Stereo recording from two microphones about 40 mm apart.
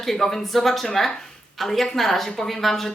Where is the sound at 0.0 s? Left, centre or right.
Centre.